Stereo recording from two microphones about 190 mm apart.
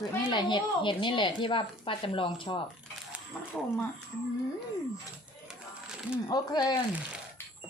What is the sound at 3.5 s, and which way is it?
Speech, 5° left (ahead or behind).